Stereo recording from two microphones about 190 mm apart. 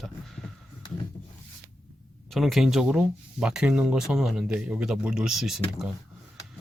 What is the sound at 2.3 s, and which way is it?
Speech, centre (ahead or behind).